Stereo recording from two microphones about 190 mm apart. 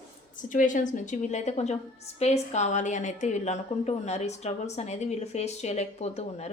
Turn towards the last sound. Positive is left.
turn(degrees=35)  # may be behind; listen again after turning